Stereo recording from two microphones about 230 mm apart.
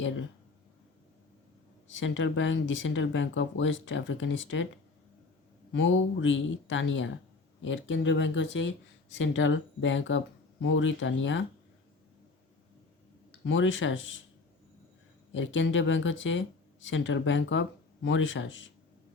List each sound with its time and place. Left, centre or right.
1.9 s speech: left
5.7 s speech: left
13.4 s speech: left
15.3 s speech: left